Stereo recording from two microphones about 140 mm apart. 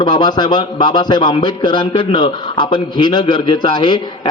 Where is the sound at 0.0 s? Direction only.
30° left (ahead or behind).